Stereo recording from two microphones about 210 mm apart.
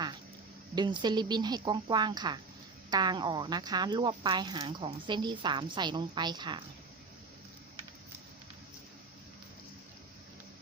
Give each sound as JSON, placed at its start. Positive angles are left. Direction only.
{"t": 0.8, "sound": "speech", "side_deg": -20}